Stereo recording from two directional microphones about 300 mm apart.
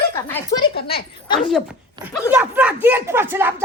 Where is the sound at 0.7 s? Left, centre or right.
Left.